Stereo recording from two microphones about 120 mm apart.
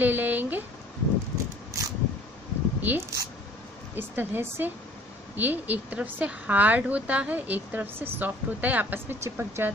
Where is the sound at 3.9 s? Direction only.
15° right (ahead or behind).